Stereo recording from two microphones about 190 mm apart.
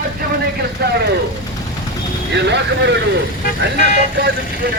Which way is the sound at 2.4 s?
65° right (ahead or behind).